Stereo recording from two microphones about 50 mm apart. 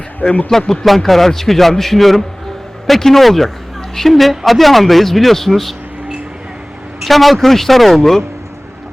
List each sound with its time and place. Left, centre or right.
0.2 s a man's voice: left
0.7 s speech: centre
7.0 s speech: centre